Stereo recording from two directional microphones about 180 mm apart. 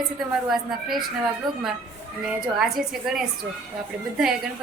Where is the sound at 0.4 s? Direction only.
Centre (ahead or behind).